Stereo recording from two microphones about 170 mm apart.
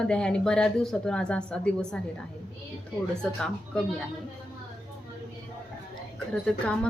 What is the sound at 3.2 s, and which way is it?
Speech, 5° left (ahead or behind).